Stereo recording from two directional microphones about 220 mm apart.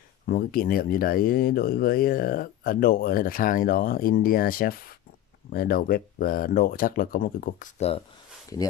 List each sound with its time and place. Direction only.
0.3 s speech: 40° left (ahead or behind)